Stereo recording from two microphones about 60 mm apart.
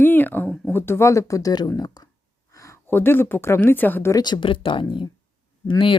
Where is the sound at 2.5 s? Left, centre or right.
Left.